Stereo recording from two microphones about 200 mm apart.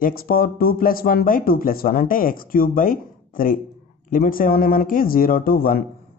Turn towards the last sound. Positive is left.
turn(degrees=45)  # may be behind; listen again after turning